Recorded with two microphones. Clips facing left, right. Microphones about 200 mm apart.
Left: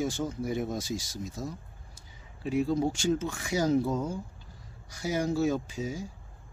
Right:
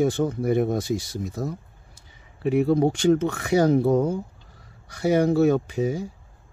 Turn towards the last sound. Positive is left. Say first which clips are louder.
# right 9 dB
turn(degrees=-60)  # may be behind; listen again after turning